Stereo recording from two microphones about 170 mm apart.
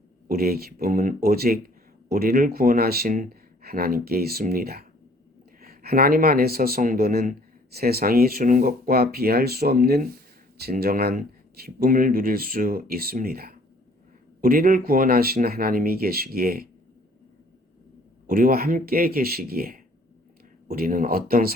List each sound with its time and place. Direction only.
0.3 s speech: 60° right (ahead or behind)
18.3 s speech: 55° right (ahead or behind)